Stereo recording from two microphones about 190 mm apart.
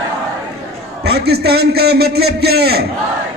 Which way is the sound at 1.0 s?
60° right (ahead or behind).